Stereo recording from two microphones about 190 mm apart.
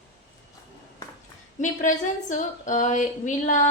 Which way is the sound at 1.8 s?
40° left (ahead or behind).